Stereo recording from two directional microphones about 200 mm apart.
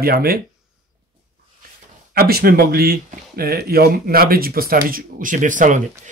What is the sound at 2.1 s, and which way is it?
Speech, 50° right (ahead or behind).